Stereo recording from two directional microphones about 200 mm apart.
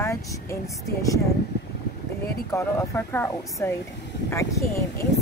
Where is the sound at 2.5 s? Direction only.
15° left (ahead or behind).